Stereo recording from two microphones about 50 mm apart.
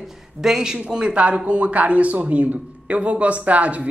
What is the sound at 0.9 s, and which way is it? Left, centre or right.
Speech, right.